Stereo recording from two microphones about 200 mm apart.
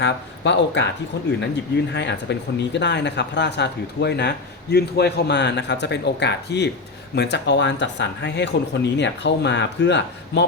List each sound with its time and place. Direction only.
0.0 s speech: 60° left (ahead or behind)